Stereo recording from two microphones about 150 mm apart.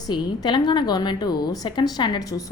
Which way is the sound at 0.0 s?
25° left (ahead or behind).